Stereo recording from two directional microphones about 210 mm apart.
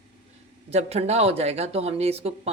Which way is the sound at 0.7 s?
30° right (ahead or behind).